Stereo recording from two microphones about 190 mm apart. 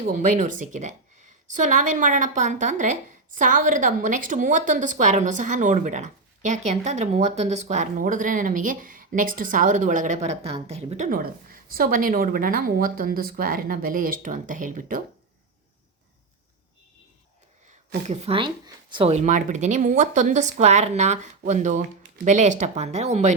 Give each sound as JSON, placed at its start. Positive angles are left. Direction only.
{"t": 0.0, "sound": "a woman's voice", "side_deg": -45}
{"t": 18.1, "sound": "speech", "side_deg": -35}